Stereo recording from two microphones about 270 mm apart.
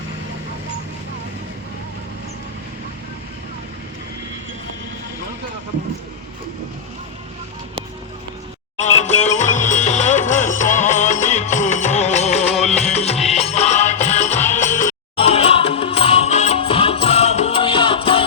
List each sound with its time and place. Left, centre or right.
8.8 s music: left
12.5 s music: centre
12.9 s music: left